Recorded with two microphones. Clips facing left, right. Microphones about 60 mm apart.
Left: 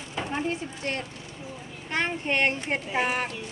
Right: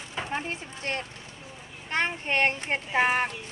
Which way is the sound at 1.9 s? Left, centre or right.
Right.